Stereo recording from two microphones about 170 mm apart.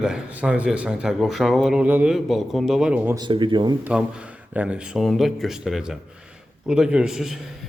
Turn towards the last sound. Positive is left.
turn(degrees=0)  # may be behind; listen again after turning